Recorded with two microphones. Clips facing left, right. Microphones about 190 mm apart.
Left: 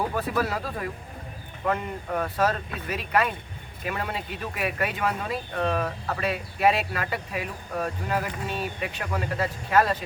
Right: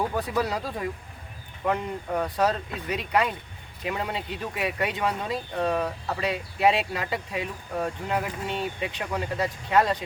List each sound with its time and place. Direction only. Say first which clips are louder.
0.3 s speech: even; 20° right (ahead or behind)